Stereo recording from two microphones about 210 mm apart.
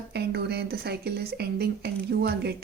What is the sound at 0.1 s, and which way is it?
A woman's voice, 50° right (ahead or behind).